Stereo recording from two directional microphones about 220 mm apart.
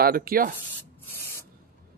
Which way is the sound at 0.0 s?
40° right (ahead or behind).